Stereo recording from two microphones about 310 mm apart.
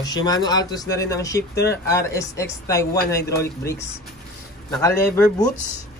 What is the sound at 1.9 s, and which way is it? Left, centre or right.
A man's voice, centre.